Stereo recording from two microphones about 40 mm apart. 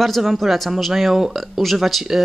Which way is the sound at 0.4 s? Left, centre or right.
Centre.